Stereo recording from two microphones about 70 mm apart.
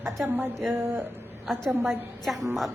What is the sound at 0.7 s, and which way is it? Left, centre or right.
Speech, right.